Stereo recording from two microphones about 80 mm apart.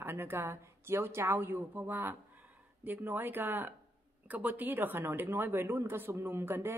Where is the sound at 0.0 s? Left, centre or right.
Right.